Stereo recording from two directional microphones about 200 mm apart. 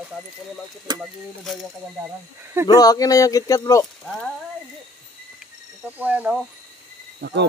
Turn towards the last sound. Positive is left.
turn(degrees=-60)  # may be behind; listen again after turning